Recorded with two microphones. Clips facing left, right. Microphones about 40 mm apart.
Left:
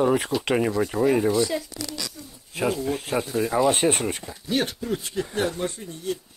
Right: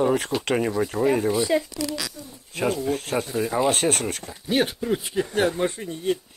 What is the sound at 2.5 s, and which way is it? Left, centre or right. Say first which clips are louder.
Speech: right 1 dB; centre.